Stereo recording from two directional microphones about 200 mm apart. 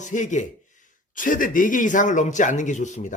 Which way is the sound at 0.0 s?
40° left (ahead or behind).